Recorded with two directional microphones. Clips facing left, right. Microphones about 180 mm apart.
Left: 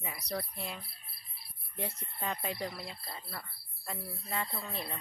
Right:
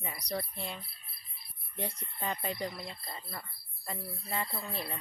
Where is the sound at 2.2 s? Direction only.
Centre (ahead or behind).